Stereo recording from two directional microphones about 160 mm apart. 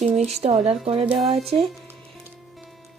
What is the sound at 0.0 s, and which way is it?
Speech, 40° right (ahead or behind).